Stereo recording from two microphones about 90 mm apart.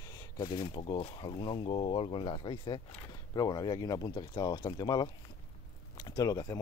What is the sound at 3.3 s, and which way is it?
Speech, 45° left (ahead or behind).